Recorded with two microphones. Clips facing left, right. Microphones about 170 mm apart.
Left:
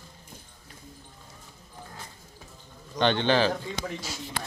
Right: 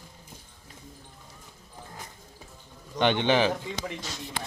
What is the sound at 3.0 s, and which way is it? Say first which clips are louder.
Speech: even; 15° right (ahead or behind).